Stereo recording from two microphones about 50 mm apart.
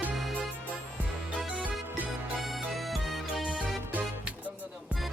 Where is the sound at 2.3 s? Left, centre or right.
Centre.